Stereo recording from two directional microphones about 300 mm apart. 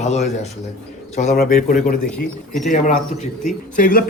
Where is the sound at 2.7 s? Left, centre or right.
Left.